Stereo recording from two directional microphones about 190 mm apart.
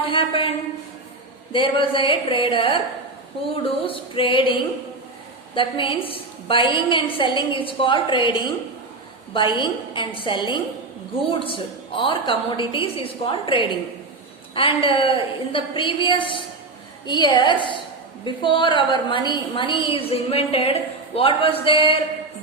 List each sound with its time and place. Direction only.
0.1 s a woman's voice: 30° left (ahead or behind)
1.5 s a woman's voice: 25° left (ahead or behind)
5.5 s a woman's voice: 25° left (ahead or behind)